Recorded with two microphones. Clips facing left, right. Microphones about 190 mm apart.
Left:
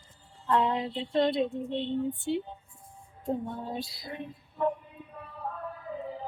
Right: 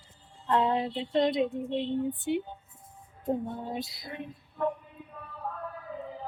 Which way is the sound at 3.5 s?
20° right (ahead or behind).